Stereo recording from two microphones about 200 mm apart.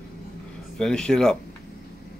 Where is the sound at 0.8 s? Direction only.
5° left (ahead or behind).